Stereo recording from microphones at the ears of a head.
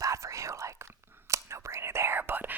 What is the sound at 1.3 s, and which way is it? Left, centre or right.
Whispering, right.